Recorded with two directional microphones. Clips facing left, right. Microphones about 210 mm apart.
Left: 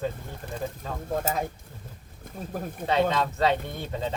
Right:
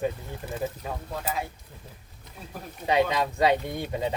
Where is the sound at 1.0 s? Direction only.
45° left (ahead or behind).